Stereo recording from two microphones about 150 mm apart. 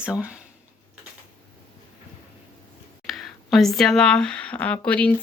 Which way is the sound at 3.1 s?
Centre (ahead or behind).